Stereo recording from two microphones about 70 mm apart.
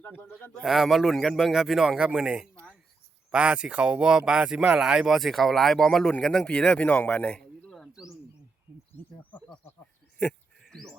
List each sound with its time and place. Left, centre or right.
0.2 s speech: left
0.6 s a man's voice: centre
10.6 s a sound: centre